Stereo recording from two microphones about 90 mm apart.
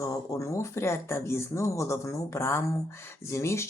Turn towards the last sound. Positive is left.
turn(degrees=30)  # may be behind; listen again after turning